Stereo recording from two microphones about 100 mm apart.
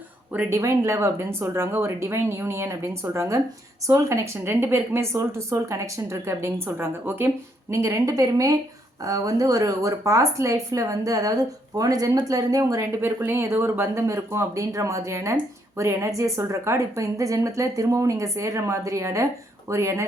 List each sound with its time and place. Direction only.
0.3 s a woman's voice: 25° right (ahead or behind)
13.0 s a woman's voice: 25° right (ahead or behind)